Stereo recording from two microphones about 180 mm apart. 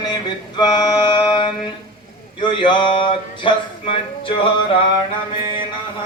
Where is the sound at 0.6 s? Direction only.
25° left (ahead or behind).